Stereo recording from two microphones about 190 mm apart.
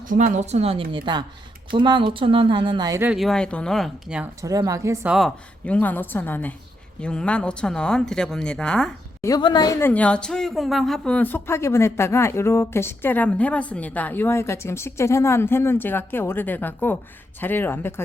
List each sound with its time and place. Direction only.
0.1 s a woman's voice: 40° right (ahead or behind); by 3.1 s 20° right (ahead or behind)
3.1 s speech: centre (ahead or behind)
4.4 s a woman's voice: 20° right (ahead or behind)
5.0 s speech: centre (ahead or behind)
9.2 s a woman's voice: 20° left (ahead or behind)
9.9 s speech: 5° left (ahead or behind)